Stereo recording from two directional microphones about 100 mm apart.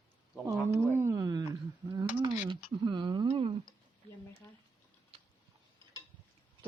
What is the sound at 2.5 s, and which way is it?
Speech, 55° right (ahead or behind).